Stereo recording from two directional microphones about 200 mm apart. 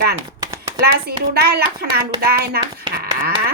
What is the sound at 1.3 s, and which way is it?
A woman's voice, 50° right (ahead or behind).